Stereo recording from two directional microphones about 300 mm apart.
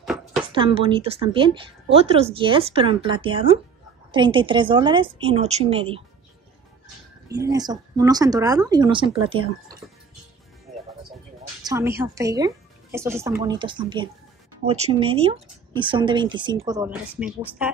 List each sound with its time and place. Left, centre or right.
0.0 s a sound: centre
0.5 s speech: centre
7.4 s speech: centre
11.6 s speech: centre